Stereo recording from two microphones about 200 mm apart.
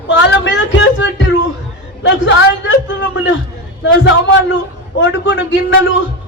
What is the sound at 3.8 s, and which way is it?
A man's voice, 65° left (ahead or behind).